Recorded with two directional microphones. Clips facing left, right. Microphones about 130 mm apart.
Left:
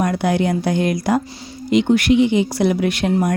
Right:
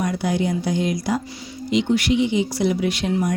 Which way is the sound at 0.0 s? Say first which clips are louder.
Left 4 dB; 60° left (ahead or behind).